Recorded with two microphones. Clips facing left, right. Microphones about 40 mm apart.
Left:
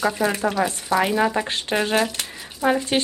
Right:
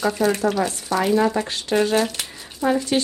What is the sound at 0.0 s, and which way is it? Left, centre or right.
Speech, centre.